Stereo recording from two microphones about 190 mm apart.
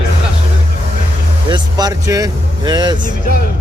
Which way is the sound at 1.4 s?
20° right (ahead or behind).